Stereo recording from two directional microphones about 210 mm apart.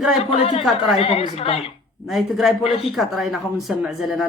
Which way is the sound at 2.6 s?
30° left (ahead or behind).